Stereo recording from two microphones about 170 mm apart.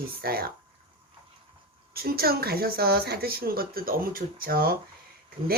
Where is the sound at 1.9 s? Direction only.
65° right (ahead or behind).